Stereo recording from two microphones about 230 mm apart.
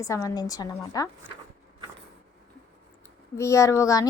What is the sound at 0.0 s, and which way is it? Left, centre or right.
A woman's voice, centre.